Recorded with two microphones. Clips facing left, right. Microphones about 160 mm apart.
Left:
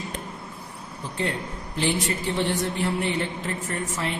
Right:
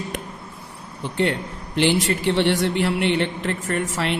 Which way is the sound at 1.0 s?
80° right.